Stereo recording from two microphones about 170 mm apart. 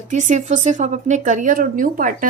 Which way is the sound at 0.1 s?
45° right (ahead or behind).